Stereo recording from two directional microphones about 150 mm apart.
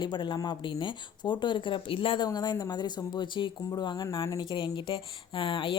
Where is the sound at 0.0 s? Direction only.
30° left (ahead or behind).